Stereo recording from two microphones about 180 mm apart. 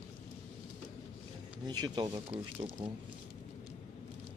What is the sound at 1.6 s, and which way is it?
Speech, 25° right (ahead or behind).